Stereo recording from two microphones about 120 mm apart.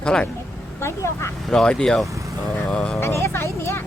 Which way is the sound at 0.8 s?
20° left (ahead or behind).